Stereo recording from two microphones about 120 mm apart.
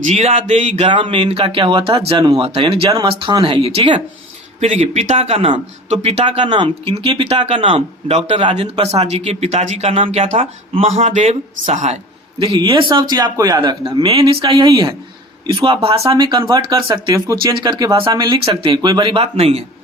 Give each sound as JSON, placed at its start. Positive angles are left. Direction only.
{"t": 0.0, "sound": "speech", "side_deg": -65}
{"t": 0.9, "sound": "speech", "side_deg": -45}
{"t": 2.2, "sound": "a man's voice", "side_deg": -40}
{"t": 2.5, "sound": "speech", "side_deg": -55}
{"t": 4.6, "sound": "speech", "side_deg": -65}
{"t": 6.4, "sound": "a man's voice", "side_deg": -40}
{"t": 12.4, "sound": "a man's voice", "side_deg": -50}
{"t": 13.6, "sound": "a man's voice", "side_deg": -40}
{"t": 14.1, "sound": "speech", "side_deg": -50}
{"t": 16.0, "sound": "a man's voice", "side_deg": -35}
{"t": 19.4, "sound": "speech", "side_deg": -55}